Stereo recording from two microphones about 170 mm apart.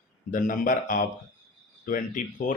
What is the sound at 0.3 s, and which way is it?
Speech, 55° left (ahead or behind).